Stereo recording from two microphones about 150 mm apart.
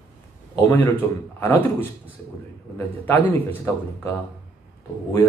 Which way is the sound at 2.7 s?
15° left (ahead or behind).